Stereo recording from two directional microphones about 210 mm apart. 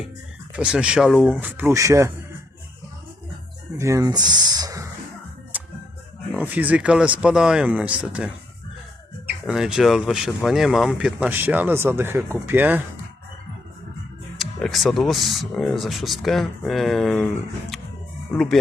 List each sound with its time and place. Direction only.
0.5 s speech: 5° right (ahead or behind)
3.8 s speech: 15° right (ahead or behind)
6.3 s speech: 5° right (ahead or behind)
9.5 s speech: 5° right (ahead or behind)
14.3 s speech: centre (ahead or behind)